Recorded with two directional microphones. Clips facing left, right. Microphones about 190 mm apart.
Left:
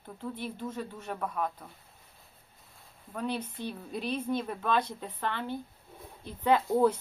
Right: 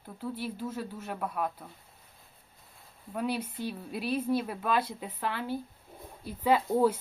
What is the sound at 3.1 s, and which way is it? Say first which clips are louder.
Speech: right 2 dB; 10° right (ahead or behind).